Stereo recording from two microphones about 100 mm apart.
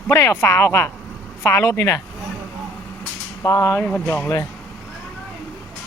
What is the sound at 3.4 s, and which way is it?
Speech, 30° left (ahead or behind).